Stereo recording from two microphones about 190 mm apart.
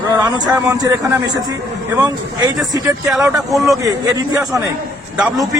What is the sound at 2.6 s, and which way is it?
A man's voice, 20° right (ahead or behind).